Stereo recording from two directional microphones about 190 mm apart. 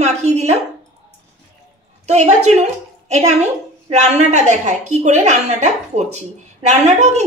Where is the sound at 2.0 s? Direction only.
35° right (ahead or behind).